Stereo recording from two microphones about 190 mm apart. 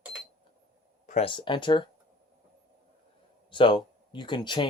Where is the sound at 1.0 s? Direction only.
35° left (ahead or behind).